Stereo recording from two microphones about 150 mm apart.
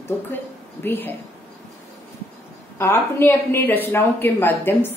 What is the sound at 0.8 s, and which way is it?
Speech, 15° left (ahead or behind).